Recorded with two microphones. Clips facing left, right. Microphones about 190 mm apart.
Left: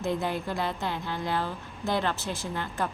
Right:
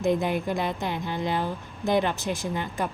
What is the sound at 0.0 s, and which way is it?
A woman's voice, 15° right (ahead or behind).